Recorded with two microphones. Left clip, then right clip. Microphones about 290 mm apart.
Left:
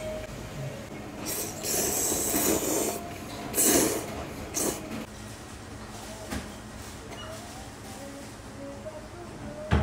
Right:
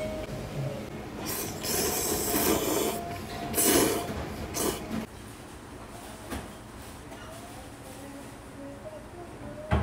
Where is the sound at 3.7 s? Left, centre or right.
Centre.